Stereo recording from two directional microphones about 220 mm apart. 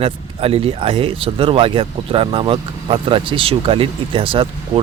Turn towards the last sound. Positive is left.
turn(degrees=-25)  # may be behind; listen again after turning